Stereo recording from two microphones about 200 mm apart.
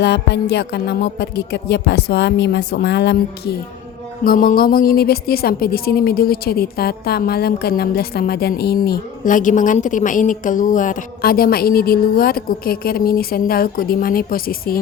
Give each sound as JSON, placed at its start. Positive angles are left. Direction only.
{"t": 0.0, "sound": "speech", "side_deg": 55}
{"t": 4.2, "sound": "a woman's voice", "side_deg": 45}